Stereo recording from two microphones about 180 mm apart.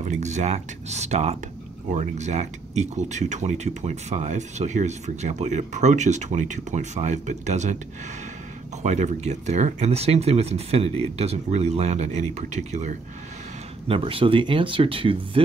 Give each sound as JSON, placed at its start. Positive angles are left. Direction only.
{"t": 0.0, "sound": "speech", "side_deg": -40}
{"t": 8.8, "sound": "speech", "side_deg": -40}
{"t": 13.8, "sound": "speech", "side_deg": -30}